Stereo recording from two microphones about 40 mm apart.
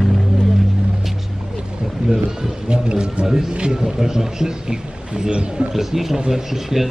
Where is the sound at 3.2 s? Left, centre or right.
Centre.